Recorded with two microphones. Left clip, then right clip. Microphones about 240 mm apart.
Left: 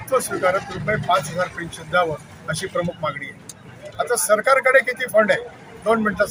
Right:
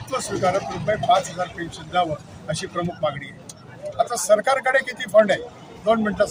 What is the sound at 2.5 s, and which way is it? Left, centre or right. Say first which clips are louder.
A man's voice: left 3 dB; centre.